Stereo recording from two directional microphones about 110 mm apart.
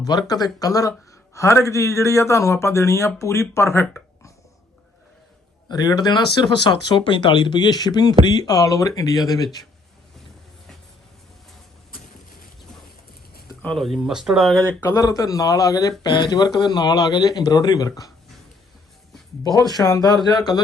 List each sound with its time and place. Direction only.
0.0 s a man's voice: 35° left (ahead or behind)
5.6 s speech: 40° left (ahead or behind)
13.6 s speech: 5° left (ahead or behind)
14.9 s speech: 30° left (ahead or behind)
19.5 s speech: 35° left (ahead or behind)